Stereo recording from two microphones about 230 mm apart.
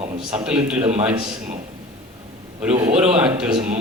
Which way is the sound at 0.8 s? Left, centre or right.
Right.